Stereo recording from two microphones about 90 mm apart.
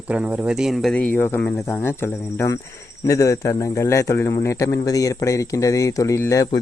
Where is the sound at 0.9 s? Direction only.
20° left (ahead or behind).